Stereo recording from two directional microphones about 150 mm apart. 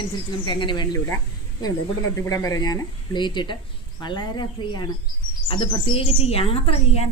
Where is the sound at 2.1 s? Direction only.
20° left (ahead or behind).